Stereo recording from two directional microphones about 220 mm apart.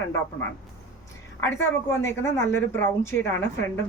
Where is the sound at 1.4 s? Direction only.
10° left (ahead or behind).